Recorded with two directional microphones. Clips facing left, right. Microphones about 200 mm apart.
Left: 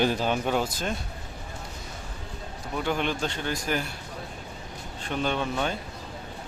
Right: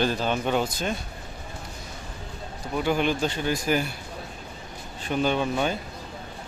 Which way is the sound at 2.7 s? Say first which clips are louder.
Right 4 dB; 5° right (ahead or behind).